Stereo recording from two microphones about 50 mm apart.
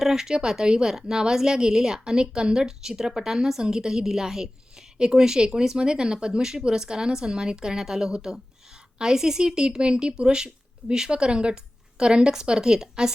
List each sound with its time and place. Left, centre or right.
0.0 s a woman's voice: centre